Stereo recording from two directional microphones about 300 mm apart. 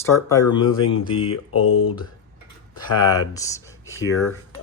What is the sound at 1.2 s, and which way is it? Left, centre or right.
Speech, left.